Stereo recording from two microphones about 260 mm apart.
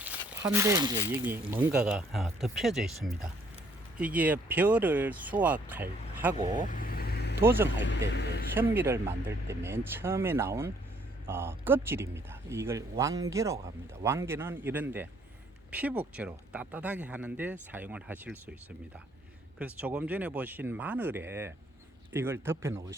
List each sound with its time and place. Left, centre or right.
0.0 s a sound: centre
1.1 s speech: centre
6.7 s vehicle: left
7.3 s speech: centre
7.7 s speech: left
8.5 s speech: centre
19.5 s speech: centre